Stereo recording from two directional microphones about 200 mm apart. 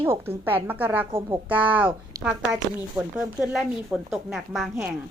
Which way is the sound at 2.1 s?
15° right (ahead or behind).